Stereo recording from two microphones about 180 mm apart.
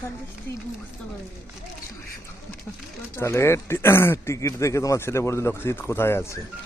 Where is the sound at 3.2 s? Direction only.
15° left (ahead or behind).